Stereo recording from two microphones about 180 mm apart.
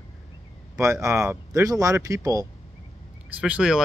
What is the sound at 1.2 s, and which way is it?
Speech, 15° right (ahead or behind).